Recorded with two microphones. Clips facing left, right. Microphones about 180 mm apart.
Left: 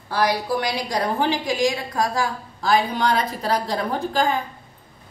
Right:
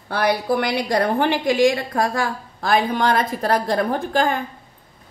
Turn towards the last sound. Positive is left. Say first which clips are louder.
# right 2 dB
turn(degrees=-55)  # may be behind; listen again after turning